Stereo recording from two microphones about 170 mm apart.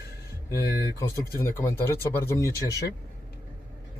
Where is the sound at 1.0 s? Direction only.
15° left (ahead or behind).